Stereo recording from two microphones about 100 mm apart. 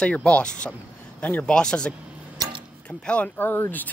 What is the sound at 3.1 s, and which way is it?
Speech, 15° left (ahead or behind).